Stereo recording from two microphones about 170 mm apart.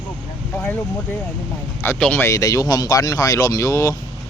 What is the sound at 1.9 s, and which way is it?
Speech, 5° left (ahead or behind).